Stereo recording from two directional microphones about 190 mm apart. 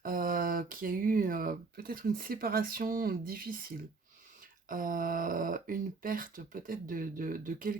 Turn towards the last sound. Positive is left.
turn(degrees=-45)  # may be behind; listen again after turning